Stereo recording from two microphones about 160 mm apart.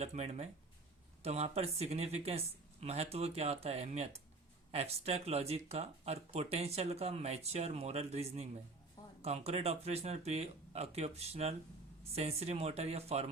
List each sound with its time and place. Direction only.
0.0 s speech: 40° right (ahead or behind)